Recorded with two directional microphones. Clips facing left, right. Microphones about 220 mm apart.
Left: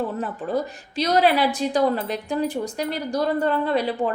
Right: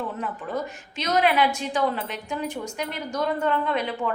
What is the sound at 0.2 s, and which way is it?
A woman's voice, 35° left (ahead or behind).